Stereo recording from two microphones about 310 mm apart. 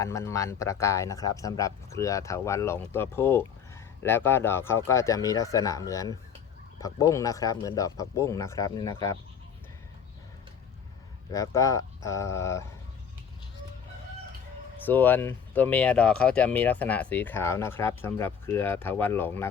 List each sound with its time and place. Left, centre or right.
0.0 s speech: centre
11.3 s speech: centre
14.8 s speech: centre